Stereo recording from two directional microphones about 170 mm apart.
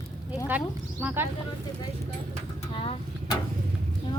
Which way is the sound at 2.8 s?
35° left (ahead or behind).